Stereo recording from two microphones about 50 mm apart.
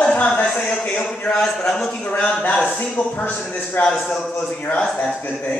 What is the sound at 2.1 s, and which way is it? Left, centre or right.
Speech, left.